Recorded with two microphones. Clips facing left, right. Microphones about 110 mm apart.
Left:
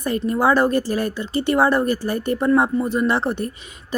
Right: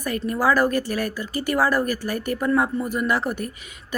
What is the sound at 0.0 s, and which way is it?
A woman's voice, 25° left (ahead or behind).